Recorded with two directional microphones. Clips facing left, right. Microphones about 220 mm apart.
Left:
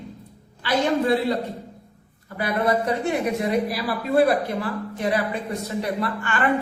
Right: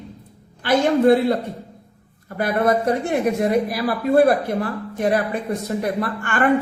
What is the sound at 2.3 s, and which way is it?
A woman's voice, 50° right (ahead or behind).